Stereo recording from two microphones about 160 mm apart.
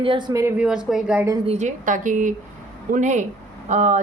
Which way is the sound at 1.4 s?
45° right (ahead or behind).